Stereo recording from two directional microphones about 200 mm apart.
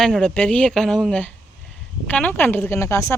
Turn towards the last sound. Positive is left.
turn(degrees=15)  # may be behind; listen again after turning